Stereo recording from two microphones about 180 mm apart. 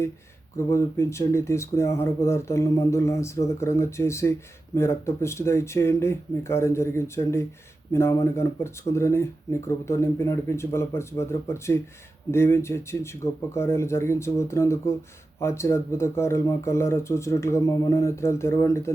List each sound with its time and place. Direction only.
0.5 s speech: 15° left (ahead or behind)